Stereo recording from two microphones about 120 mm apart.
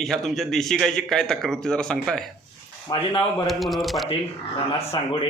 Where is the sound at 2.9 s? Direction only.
45° left (ahead or behind).